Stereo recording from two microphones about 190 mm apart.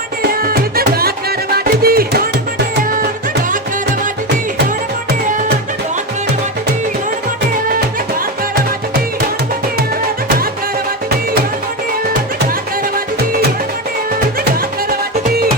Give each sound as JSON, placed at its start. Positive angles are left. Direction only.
{"t": 0.2, "sound": "music", "side_deg": -55}